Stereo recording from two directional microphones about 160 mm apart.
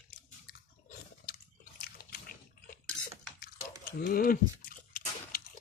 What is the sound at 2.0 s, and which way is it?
Water, 70° left (ahead or behind).